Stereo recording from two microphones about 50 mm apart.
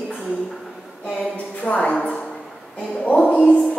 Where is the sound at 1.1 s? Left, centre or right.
Left.